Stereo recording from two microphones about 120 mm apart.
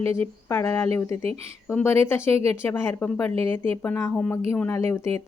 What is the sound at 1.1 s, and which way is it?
Speech, 60° right (ahead or behind).